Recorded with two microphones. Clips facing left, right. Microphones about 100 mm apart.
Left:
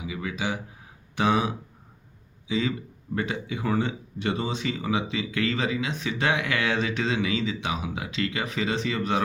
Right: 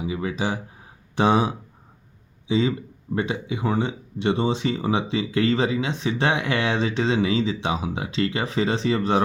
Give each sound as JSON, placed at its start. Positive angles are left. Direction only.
{"t": 0.0, "sound": "speech", "side_deg": -35}